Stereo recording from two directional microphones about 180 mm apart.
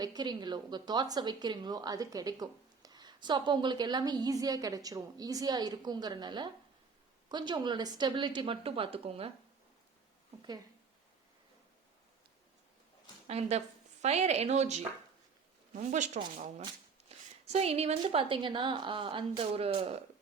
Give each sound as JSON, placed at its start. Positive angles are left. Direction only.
{"t": 0.0, "sound": "speech", "side_deg": -25}
{"t": 13.2, "sound": "a woman's voice", "side_deg": -35}